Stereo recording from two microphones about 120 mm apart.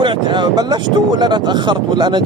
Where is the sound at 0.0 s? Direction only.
40° right (ahead or behind).